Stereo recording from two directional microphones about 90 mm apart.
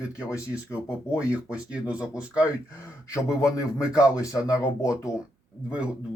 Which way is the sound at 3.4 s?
40° left (ahead or behind).